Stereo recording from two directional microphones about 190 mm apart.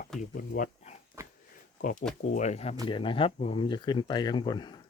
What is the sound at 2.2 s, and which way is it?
Speech, 40° left (ahead or behind).